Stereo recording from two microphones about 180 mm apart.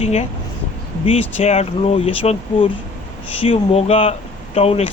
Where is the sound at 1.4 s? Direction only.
35° left (ahead or behind).